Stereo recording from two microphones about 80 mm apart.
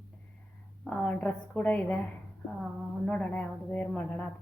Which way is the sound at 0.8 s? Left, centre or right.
Centre.